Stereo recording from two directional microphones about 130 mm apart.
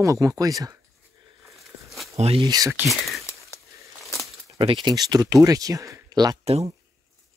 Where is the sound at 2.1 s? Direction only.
50° right (ahead or behind).